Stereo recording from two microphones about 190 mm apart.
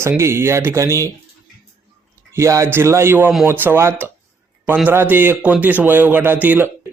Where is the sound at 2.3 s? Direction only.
15° right (ahead or behind).